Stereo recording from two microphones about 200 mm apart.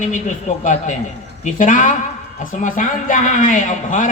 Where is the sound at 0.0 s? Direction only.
40° left (ahead or behind).